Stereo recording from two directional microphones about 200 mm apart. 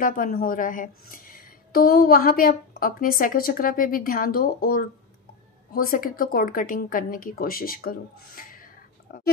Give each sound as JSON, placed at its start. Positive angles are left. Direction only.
{"t": 0.0, "sound": "a woman's voice", "side_deg": 45}